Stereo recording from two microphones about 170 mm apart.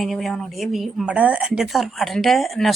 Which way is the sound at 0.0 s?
Centre (ahead or behind).